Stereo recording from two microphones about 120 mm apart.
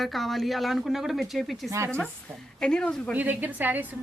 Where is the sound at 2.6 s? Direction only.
5° left (ahead or behind).